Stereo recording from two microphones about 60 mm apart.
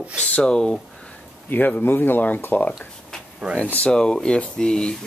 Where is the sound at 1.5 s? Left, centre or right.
Left.